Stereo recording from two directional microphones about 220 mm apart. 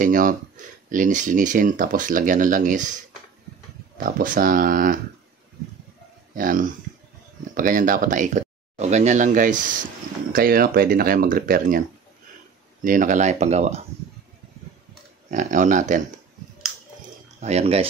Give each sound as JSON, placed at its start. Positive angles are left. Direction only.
{"t": 0.0, "sound": "speech", "side_deg": -35}
{"t": 4.0, "sound": "speech", "side_deg": -40}
{"t": 6.3, "sound": "speech", "side_deg": -40}
{"t": 12.8, "sound": "speech", "side_deg": -35}
{"t": 15.3, "sound": "speech", "side_deg": -35}
{"t": 17.4, "sound": "speech", "side_deg": -30}